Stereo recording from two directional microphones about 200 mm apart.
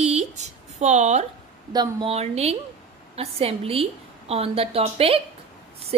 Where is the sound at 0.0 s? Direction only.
35° right (ahead or behind).